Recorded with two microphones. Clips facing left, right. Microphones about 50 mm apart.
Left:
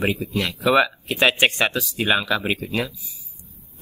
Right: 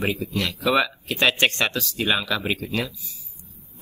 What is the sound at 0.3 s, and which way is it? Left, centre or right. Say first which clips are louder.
Speech: left 3 dB; centre.